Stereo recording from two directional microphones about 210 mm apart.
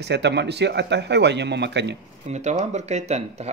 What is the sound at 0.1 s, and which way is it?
Speech, 55° right (ahead or behind).